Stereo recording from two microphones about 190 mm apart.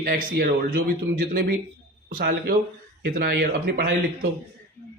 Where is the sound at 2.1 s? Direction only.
50° right (ahead or behind).